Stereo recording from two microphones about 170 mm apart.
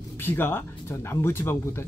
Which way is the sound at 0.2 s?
15° left (ahead or behind).